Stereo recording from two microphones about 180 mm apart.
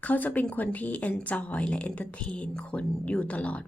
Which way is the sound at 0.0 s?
10° left (ahead or behind).